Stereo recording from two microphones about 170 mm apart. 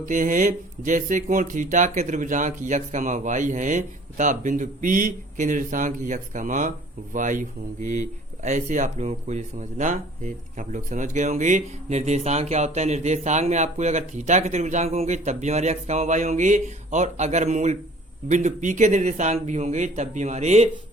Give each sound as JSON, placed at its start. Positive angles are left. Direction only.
{"t": 0.0, "sound": "speech", "side_deg": -50}
{"t": 8.4, "sound": "speech", "side_deg": -45}